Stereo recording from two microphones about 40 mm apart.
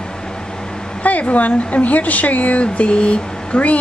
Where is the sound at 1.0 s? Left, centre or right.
Left.